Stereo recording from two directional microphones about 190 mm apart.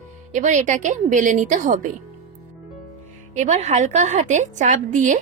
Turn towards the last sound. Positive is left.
turn(degrees=-45)  # may be behind; listen again after turning